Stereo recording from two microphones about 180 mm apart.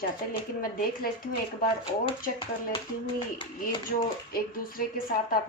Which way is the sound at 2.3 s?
30° left (ahead or behind).